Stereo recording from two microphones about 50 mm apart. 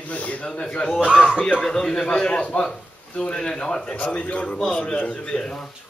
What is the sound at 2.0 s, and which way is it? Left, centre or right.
A man's voice, left.